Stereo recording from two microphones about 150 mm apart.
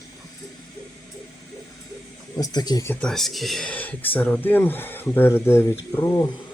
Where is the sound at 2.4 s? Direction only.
25° left (ahead or behind).